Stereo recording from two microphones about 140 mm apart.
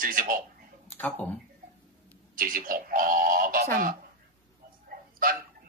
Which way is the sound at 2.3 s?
80° right.